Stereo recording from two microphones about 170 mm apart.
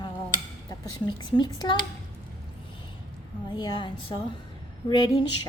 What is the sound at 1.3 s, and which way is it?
Speech, 25° left (ahead or behind).